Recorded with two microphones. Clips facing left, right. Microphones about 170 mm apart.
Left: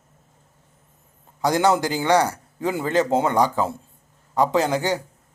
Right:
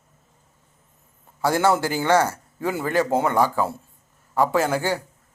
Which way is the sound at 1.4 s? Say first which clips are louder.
Left 1 dB; 20° left (ahead or behind).